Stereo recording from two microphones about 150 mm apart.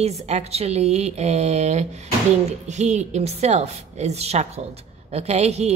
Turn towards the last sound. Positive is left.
turn(degrees=-45)  # may be behind; listen again after turning